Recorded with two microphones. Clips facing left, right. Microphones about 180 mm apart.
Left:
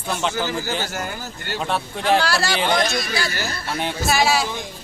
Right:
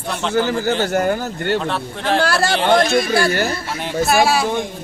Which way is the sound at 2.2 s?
50° right (ahead or behind).